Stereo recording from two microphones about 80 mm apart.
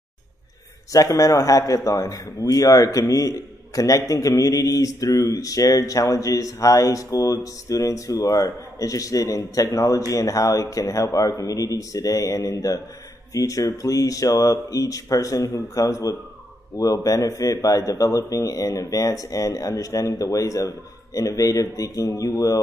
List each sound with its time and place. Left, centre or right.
0.9 s a man's voice: left
12.4 s a man's voice: left